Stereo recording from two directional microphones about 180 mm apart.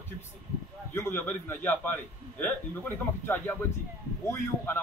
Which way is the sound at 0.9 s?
15° left (ahead or behind).